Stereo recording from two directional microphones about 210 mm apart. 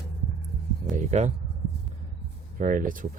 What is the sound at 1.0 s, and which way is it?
Speech, 35° right (ahead or behind).